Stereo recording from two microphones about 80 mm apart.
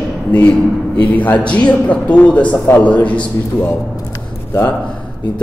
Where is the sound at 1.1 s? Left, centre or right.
Centre.